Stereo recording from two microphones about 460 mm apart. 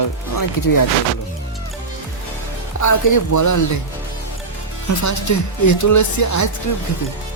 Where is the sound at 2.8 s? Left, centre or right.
Left.